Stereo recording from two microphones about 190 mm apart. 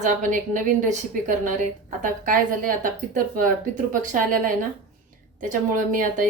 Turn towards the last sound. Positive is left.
turn(degrees=-45)  # may be behind; listen again after turning